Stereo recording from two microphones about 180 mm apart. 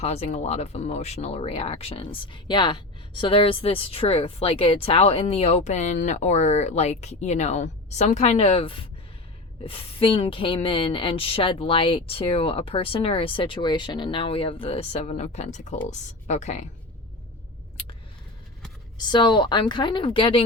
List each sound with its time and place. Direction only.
0.0 s speech: 35° left (ahead or behind)
18.9 s a woman's voice: 25° left (ahead or behind)